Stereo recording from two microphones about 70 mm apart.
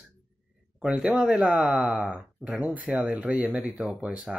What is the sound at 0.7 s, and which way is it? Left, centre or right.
Speech, centre.